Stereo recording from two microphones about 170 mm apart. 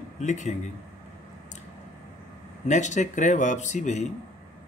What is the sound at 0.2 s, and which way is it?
Speech, 45° left (ahead or behind).